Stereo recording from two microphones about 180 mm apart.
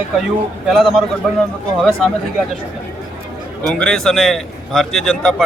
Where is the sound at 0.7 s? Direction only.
Centre (ahead or behind).